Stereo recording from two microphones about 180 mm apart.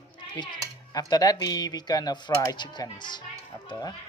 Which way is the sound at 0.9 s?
20° left (ahead or behind).